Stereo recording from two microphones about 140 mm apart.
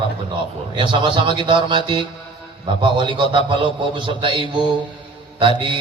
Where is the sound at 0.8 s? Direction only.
35° right (ahead or behind).